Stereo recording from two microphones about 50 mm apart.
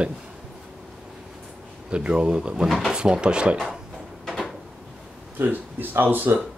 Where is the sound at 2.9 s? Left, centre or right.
Centre.